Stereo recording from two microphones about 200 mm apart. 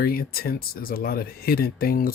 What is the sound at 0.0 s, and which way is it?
Speech, 50° left (ahead or behind).